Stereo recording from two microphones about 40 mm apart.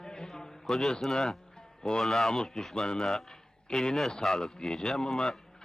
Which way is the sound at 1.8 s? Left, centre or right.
Centre.